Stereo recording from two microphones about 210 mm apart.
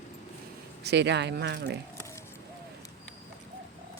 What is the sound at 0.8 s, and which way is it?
Speech, 55° right (ahead or behind).